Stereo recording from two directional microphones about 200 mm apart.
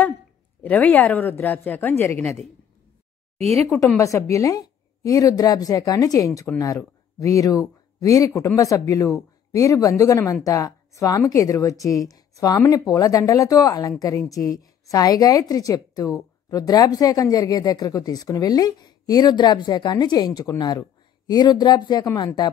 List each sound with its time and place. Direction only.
0.6 s a woman's voice: 10° left (ahead or behind)
3.6 s a woman's voice: 15° left (ahead or behind)